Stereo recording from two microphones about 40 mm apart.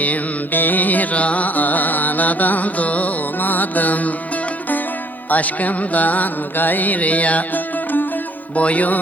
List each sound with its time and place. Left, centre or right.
0.0 s music: left
5.3 s music: left